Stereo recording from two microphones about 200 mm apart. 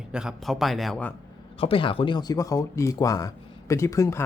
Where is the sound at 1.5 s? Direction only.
25° left (ahead or behind).